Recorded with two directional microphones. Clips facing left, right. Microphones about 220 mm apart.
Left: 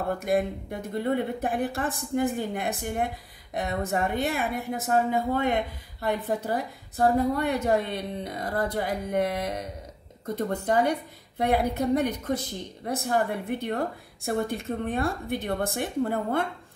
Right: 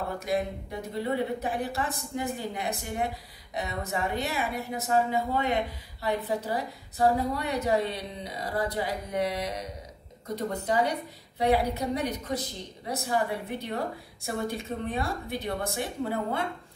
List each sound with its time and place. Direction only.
0.2 s a woman's voice: 55° left (ahead or behind)